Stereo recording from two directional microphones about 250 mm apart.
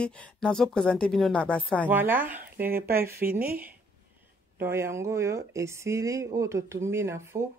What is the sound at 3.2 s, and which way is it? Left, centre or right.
Speech, right.